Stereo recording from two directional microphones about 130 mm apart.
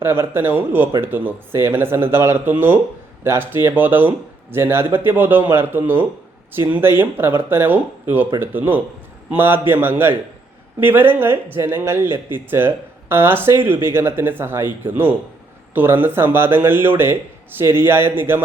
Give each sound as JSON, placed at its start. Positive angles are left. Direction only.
{"t": 0.0, "sound": "speech", "side_deg": -15}